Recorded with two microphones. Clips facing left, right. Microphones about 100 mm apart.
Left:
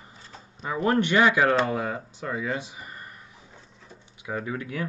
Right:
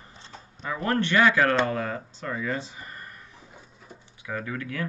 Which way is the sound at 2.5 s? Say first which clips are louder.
Even; 15° left (ahead or behind).